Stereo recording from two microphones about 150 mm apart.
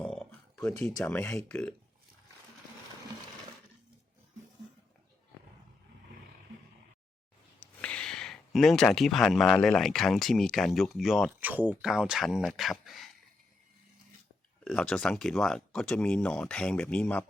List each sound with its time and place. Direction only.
0.0 s a sound: 5° left (ahead or behind)
0.5 s speech: 20° left (ahead or behind)
1.0 s speech: 10° left (ahead or behind)
7.6 s speech: 10° left (ahead or behind)
14.6 s speech: 5° left (ahead or behind)